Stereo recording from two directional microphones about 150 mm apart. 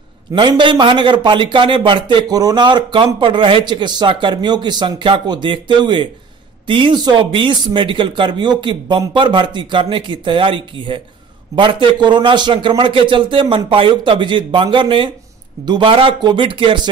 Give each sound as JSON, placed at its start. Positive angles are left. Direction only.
{"t": 0.3, "sound": "speech", "side_deg": -30}